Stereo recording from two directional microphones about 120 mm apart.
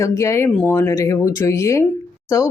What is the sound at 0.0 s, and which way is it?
Speech, 25° left (ahead or behind).